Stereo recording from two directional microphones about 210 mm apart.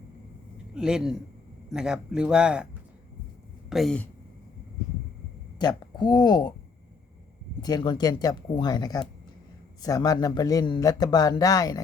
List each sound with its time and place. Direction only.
0.7 s speech: 5° right (ahead or behind)
3.7 s speech: centre (ahead or behind)
5.5 s speech: 20° left (ahead or behind)
7.6 s a man's voice: 20° left (ahead or behind)